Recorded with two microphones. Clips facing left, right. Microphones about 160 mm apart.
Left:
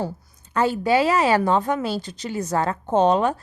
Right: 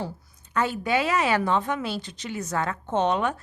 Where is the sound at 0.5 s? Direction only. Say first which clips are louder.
Left 5 dB; 35° left (ahead or behind).